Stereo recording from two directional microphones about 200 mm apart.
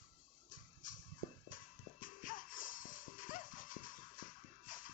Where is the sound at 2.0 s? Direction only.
45° left (ahead or behind).